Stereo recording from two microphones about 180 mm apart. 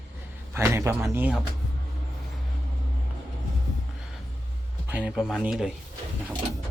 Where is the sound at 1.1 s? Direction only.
10° right (ahead or behind).